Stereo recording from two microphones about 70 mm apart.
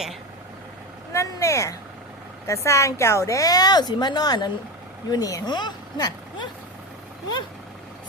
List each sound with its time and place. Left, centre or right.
1.1 s a woman's voice: left
5.0 s speech: left